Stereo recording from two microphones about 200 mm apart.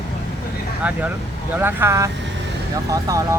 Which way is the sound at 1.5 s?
10° right (ahead or behind).